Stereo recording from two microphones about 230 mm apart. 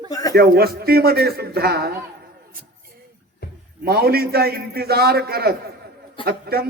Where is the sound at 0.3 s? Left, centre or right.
Right.